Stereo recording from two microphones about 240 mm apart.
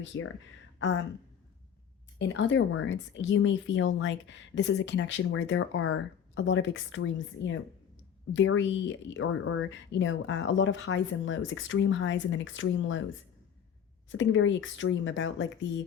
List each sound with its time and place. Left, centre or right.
0.1 s speech: left
2.1 s speech: left
14.1 s speech: left